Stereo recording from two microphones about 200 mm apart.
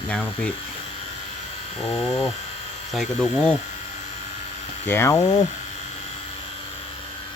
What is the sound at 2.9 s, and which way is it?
Speech, 5° left (ahead or behind).